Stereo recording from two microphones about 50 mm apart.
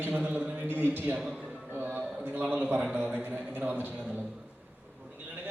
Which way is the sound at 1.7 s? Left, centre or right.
Right.